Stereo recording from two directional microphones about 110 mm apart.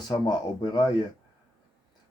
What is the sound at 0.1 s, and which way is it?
Speech, 40° left (ahead or behind).